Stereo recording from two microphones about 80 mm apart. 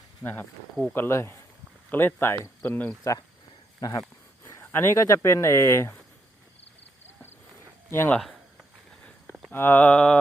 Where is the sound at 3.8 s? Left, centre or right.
Left.